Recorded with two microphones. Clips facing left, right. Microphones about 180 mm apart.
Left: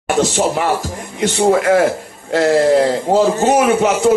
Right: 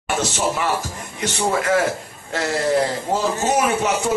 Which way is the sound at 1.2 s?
55° left (ahead or behind).